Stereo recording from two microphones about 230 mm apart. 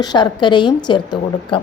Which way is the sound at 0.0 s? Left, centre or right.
Centre.